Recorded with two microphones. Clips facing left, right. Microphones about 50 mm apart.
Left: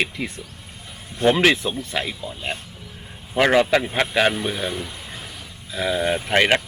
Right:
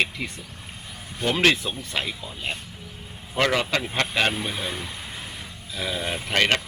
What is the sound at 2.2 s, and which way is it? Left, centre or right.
Speech, left.